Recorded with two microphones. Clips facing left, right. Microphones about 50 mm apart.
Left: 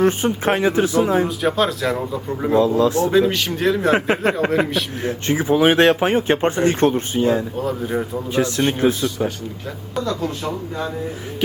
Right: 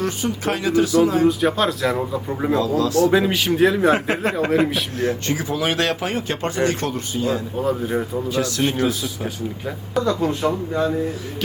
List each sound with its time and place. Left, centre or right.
0.0 s speech: left
1.3 s speech: centre
2.6 s speech: left
3.1 s speech: centre
4.4 s a man's voice: centre
4.9 s speech: left
7.6 s speech: centre
8.3 s speech: left
10.0 s speech: centre